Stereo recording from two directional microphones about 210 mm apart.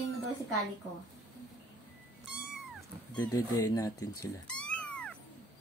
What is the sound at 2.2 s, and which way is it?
Cat, 5° right (ahead or behind).